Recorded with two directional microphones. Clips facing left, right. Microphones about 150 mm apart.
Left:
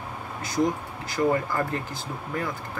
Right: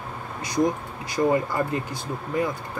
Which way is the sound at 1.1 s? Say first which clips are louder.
Right 2 dB; 15° right (ahead or behind).